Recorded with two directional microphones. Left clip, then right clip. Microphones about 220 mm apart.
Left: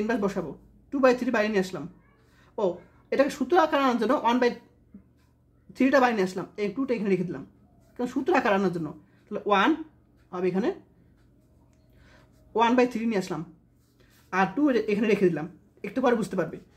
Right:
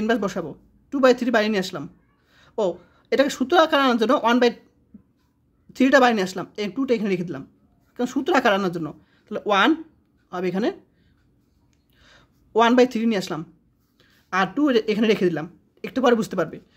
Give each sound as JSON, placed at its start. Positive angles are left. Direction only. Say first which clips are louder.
{"t": 0.0, "sound": "a woman's voice", "louder": "right 4 dB", "side_deg": -35}
{"t": 5.7, "sound": "speech", "louder": "right 5 dB", "side_deg": -40}
{"t": 12.0, "sound": "speech", "louder": "right 4 dB", "side_deg": -35}